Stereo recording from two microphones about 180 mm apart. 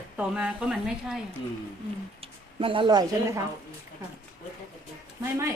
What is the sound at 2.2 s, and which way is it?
Speech, 30° right (ahead or behind).